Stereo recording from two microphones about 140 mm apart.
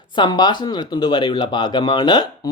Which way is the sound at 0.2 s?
30° left (ahead or behind).